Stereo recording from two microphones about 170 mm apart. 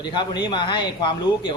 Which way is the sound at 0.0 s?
25° left (ahead or behind).